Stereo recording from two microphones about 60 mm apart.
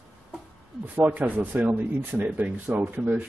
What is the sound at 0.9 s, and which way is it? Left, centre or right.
A man's voice, right.